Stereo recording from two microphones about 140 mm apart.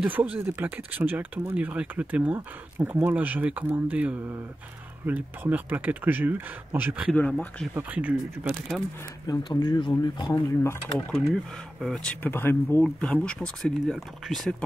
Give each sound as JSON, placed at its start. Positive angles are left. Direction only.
{"t": 0.0, "sound": "speech", "side_deg": -10}
{"t": 7.2, "sound": "speech", "side_deg": 10}
{"t": 7.7, "sound": "speech", "side_deg": -10}
{"t": 9.3, "sound": "speech", "side_deg": 30}
{"t": 10.3, "sound": "speech", "side_deg": 20}
{"t": 11.1, "sound": "speech", "side_deg": 5}